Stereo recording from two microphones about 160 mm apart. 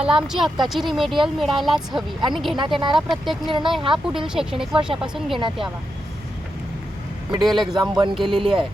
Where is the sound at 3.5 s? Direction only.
30° right (ahead or behind).